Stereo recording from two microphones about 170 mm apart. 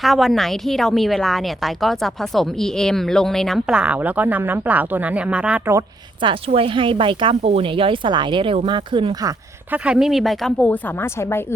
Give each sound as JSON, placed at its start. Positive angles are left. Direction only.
{"t": 0.0, "sound": "a woman's voice", "side_deg": 0}
{"t": 6.2, "sound": "speech", "side_deg": -30}
{"t": 9.7, "sound": "a woman's voice", "side_deg": -5}